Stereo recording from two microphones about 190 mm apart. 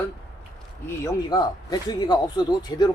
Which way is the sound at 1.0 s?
20° left (ahead or behind).